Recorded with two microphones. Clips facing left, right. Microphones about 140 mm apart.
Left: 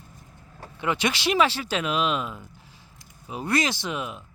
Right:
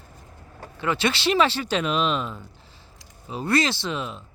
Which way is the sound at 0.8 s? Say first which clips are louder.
Right 1 dB; 15° left (ahead or behind).